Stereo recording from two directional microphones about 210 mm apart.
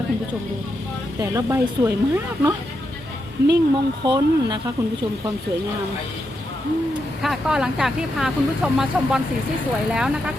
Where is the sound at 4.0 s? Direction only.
20° right (ahead or behind).